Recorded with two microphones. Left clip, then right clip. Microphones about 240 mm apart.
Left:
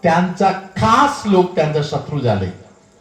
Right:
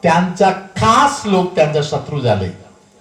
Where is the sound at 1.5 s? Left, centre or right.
Right.